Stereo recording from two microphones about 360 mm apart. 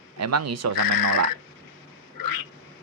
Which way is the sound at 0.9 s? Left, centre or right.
Left.